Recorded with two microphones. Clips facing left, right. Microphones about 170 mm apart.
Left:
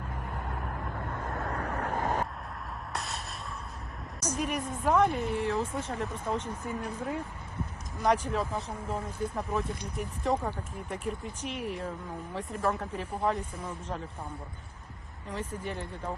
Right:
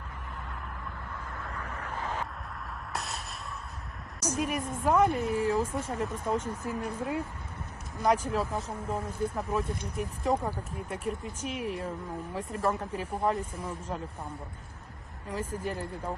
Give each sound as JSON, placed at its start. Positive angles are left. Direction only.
{"t": 0.3, "sound": "vehicle", "side_deg": 50}
{"t": 1.9, "sound": "vehicle", "side_deg": 45}
{"t": 2.9, "sound": "a sound", "side_deg": 0}
{"t": 4.2, "sound": "a woman's voice", "side_deg": -5}
{"t": 8.3, "sound": "speech", "side_deg": -5}
{"t": 15.3, "sound": "speech", "side_deg": -5}